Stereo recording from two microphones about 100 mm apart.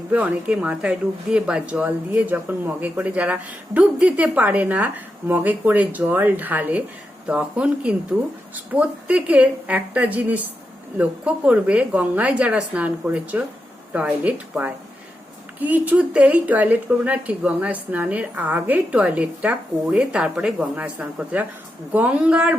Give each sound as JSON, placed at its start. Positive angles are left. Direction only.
{"t": 0.1, "sound": "speech", "side_deg": -15}